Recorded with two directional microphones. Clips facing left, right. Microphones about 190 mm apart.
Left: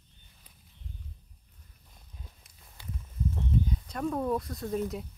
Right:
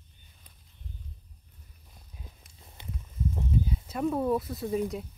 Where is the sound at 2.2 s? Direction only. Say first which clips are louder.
Right 3 dB; 20° right (ahead or behind).